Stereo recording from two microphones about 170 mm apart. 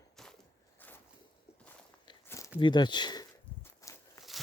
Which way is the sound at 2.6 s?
25° left (ahead or behind).